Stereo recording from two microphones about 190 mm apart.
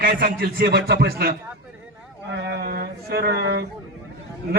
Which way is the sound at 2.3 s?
60° right (ahead or behind).